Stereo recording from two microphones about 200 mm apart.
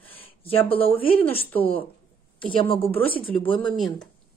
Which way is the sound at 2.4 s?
25° left (ahead or behind).